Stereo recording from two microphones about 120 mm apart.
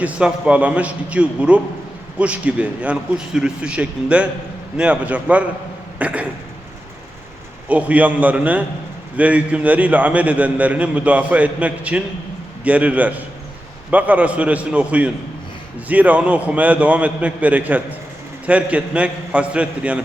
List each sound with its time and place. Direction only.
0.0 s a man's voice: 10° right (ahead or behind)
6.0 s a sound: 10° right (ahead or behind)
7.7 s a man's voice: 10° right (ahead or behind)